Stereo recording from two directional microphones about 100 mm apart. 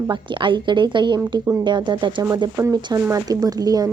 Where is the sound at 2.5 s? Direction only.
30° right (ahead or behind).